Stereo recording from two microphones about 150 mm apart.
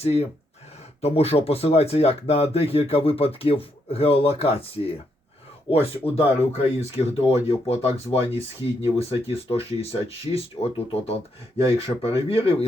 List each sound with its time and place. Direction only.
0.0 s speech: 45° left (ahead or behind)